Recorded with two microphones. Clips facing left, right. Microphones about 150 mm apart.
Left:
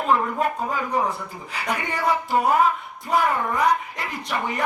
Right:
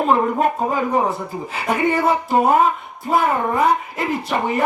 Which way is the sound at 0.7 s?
30° right (ahead or behind).